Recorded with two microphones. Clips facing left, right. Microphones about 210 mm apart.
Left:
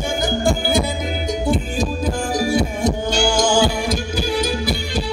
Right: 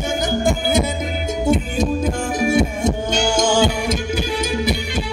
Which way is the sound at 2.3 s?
25° right (ahead or behind).